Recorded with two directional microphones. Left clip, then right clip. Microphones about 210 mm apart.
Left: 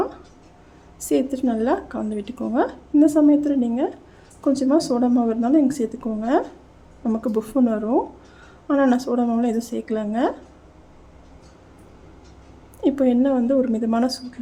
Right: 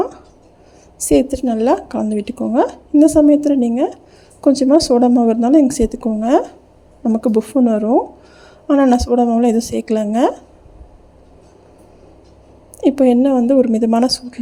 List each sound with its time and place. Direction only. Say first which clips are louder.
0.9 s a woman's voice: right 7 dB; 25° right (ahead or behind)
12.8 s a woman's voice: right 6 dB; 25° right (ahead or behind)